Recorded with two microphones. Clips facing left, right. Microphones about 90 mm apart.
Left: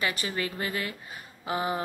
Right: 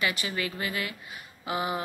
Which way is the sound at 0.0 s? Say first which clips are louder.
Even; 40° left (ahead or behind).